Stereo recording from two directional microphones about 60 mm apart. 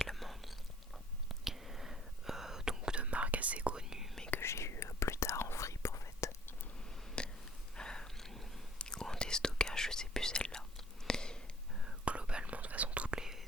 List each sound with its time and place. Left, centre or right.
0.1 s whispering: centre
4.4 s whispering: left
7.2 s a sound: centre
7.8 s whispering: centre
11.9 s whispering: centre